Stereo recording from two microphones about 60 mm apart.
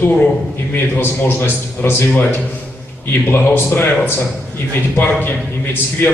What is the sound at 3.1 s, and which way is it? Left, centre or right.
A man's voice, left.